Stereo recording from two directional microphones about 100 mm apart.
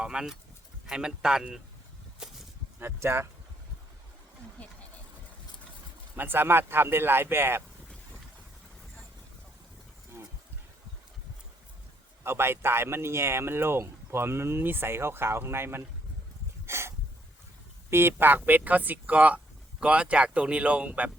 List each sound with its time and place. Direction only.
0.0 s speech: 10° right (ahead or behind)
2.1 s a sound: 5° right (ahead or behind)
2.8 s speech: 25° right (ahead or behind)
6.1 s speech: 20° right (ahead or behind)
12.2 s speech: 25° right (ahead or behind)
16.6 s a sound: 25° right (ahead or behind)
17.9 s speech: 20° right (ahead or behind)